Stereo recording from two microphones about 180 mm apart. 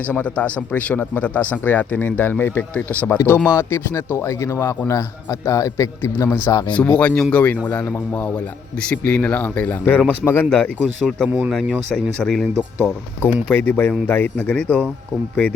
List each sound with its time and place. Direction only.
0.1 s a man's voice: 5° left (ahead or behind)
7.0 s a man's voice: 5° left (ahead or behind)
11.3 s speech: 15° right (ahead or behind)
11.5 s a man's voice: centre (ahead or behind)